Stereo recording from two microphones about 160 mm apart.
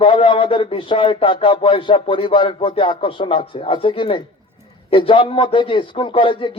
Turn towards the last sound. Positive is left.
turn(degrees=30)  # may be behind; listen again after turning